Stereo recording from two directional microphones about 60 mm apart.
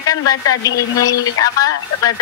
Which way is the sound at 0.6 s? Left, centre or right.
Left.